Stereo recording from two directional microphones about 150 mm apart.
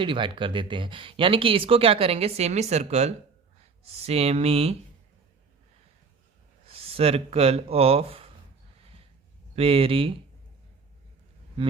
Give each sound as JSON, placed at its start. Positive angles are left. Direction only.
{"t": 0.0, "sound": "speech", "side_deg": -35}
{"t": 6.7, "sound": "speech", "side_deg": -40}
{"t": 8.8, "sound": "a sound", "side_deg": -40}
{"t": 9.6, "sound": "speech", "side_deg": -40}